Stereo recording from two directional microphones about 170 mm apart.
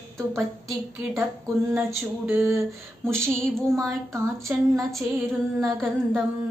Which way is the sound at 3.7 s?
20° right (ahead or behind).